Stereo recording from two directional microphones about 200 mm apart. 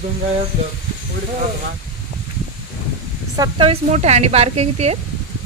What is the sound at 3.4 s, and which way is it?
A woman's voice, 30° right (ahead or behind).